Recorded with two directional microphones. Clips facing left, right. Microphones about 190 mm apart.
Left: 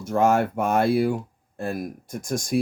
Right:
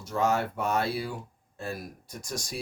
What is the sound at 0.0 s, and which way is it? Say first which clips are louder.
Speech: left 7 dB; 50° left (ahead or behind).